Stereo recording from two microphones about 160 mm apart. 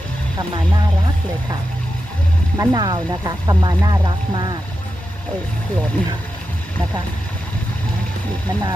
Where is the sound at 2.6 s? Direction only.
25° right (ahead or behind).